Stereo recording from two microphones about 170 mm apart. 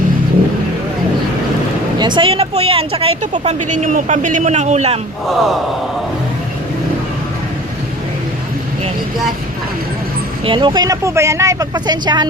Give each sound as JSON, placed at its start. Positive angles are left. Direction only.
{"t": 2.0, "sound": "speech", "side_deg": -25}
{"t": 3.3, "sound": "a man's voice", "side_deg": -45}
{"t": 10.4, "sound": "speech", "side_deg": -30}